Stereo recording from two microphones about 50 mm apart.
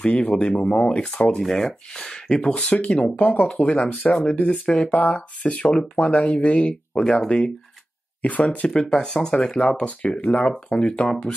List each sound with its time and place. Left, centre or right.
0.0 s speech: left
1.4 s speech: centre